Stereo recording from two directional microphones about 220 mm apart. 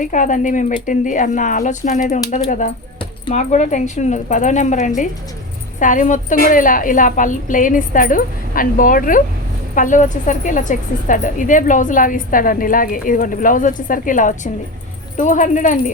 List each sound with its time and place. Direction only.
0.0 s a woman's voice: 35° left (ahead or behind)